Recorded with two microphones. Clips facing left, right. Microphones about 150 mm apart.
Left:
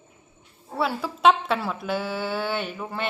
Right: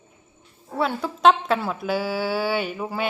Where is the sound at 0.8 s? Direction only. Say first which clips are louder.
Right 2 dB; 5° left (ahead or behind).